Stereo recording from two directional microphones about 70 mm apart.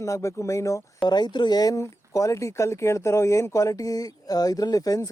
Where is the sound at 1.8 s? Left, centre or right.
Left.